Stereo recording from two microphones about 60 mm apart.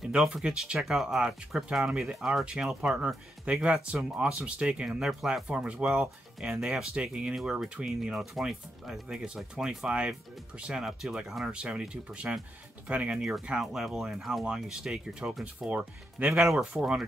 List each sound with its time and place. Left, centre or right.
0.0 s speech: centre
5.5 s speech: centre
5.9 s speech: centre
7.0 s speech: centre
13.2 s speech: centre
16.2 s speech: right
16.5 s speech: centre